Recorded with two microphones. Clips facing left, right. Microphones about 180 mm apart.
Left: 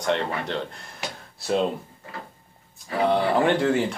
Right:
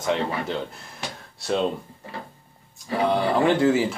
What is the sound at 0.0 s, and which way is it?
Speech, centre (ahead or behind).